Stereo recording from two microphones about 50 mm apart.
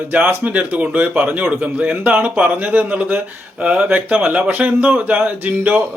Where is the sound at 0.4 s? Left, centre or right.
Right.